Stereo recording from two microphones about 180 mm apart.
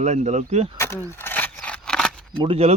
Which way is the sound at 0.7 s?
15° left (ahead or behind).